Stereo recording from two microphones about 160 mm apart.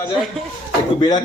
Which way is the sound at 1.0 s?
25° left (ahead or behind).